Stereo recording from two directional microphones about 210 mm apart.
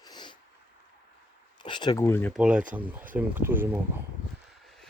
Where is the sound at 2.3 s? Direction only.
5° right (ahead or behind).